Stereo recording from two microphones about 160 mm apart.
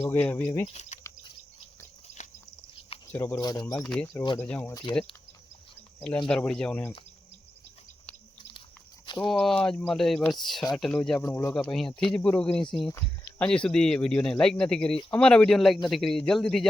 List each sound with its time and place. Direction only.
0.0 s speech: 10° left (ahead or behind)
0.7 s speech: 45° left (ahead or behind)
2.1 s cricket: 75° right (ahead or behind)
3.1 s speech: 15° left (ahead or behind)
3.8 s speech: 5° left (ahead or behind)
6.2 s speech: 5° left (ahead or behind)
9.0 s a sound: 30° left (ahead or behind)
9.3 s speech: 5° left (ahead or behind)
11.2 s speech: 15° left (ahead or behind)
11.5 s speech: 5° left (ahead or behind)